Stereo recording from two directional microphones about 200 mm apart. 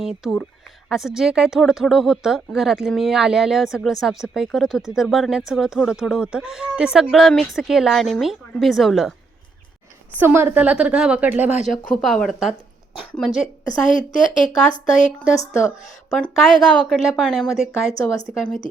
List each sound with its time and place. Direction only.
0.0 s a woman's voice: centre (ahead or behind)
10.2 s a woman's voice: 10° right (ahead or behind)
11.5 s speech: 35° left (ahead or behind)
11.9 s a woman's voice: 5° left (ahead or behind)
13.9 s speech: 40° left (ahead or behind)
16.0 s a woman's voice: 5° left (ahead or behind)
17.7 s speech: 15° left (ahead or behind)